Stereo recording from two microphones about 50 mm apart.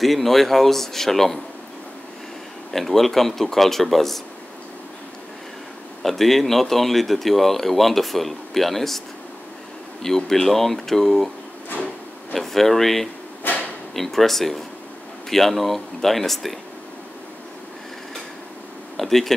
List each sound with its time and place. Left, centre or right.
0.0 s speech: centre
2.7 s speech: centre
6.0 s speech: centre
10.0 s speech: centre
11.7 s drawer open or close: left
12.4 s speech: centre
13.5 s drawer open or close: left
13.9 s speech: centre
18.9 s speech: centre